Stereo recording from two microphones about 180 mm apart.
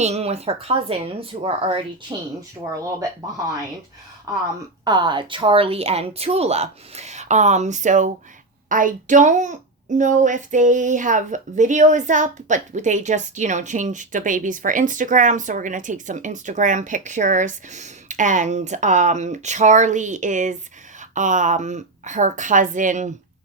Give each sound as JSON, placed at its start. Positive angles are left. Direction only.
{"t": 0.0, "sound": "speech", "side_deg": -35}
{"t": 4.9, "sound": "a child's voice", "side_deg": -25}